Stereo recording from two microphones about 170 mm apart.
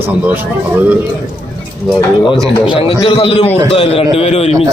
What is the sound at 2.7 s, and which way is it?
A man's voice, 35° left (ahead or behind).